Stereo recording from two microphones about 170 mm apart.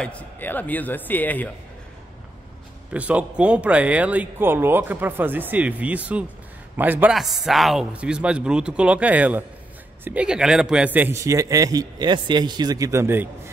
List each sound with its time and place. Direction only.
0.0 s a man's voice: 10° left (ahead or behind)
2.9 s speech: 5° right (ahead or behind)